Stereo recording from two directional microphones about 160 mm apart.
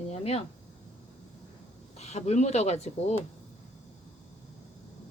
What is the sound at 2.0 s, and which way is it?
Speech, 45° left (ahead or behind).